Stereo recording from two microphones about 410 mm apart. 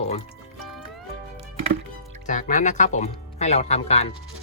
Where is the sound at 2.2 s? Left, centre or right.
Centre.